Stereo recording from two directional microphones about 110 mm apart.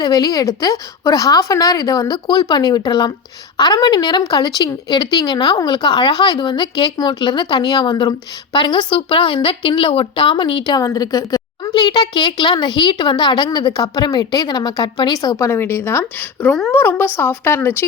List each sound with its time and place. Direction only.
0.0 s a woman's voice: 35° left (ahead or behind)
10.8 s a woman's voice: 35° left (ahead or behind)
15.4 s a woman's voice: 20° left (ahead or behind)